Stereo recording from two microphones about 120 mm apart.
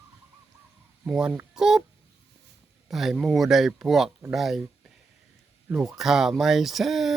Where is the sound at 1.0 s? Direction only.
5° right (ahead or behind).